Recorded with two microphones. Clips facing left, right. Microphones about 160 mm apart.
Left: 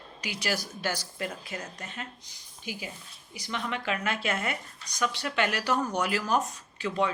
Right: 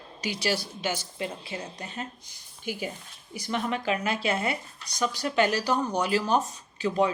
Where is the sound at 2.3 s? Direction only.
50° right (ahead or behind).